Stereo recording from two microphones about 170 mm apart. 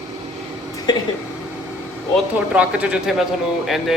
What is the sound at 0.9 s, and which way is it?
Speech, 25° left (ahead or behind).